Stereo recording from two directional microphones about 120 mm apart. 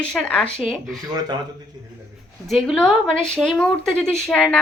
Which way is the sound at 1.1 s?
35° right (ahead or behind).